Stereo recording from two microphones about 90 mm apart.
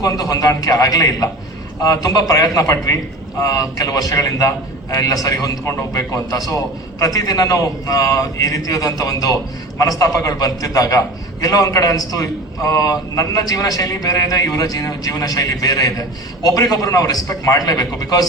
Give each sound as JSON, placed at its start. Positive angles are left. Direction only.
{"t": 0.0, "sound": "a man's voice", "side_deg": 40}